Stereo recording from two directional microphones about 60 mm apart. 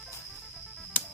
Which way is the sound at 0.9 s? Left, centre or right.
Left.